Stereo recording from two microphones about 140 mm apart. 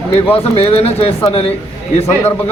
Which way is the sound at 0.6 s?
45° left (ahead or behind).